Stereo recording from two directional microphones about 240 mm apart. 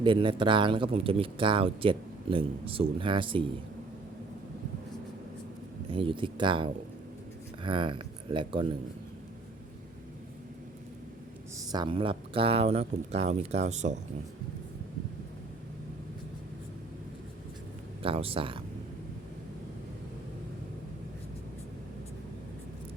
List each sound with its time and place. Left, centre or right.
0.0 s speech: right
5.9 s speech: right
11.7 s speech: centre
18.0 s speech: right